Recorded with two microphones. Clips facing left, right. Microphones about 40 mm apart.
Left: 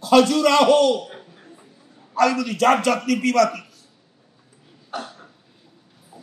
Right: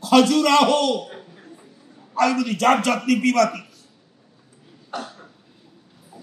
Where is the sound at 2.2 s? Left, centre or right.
Right.